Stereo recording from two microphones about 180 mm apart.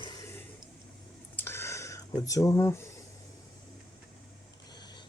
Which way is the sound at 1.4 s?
15° left (ahead or behind).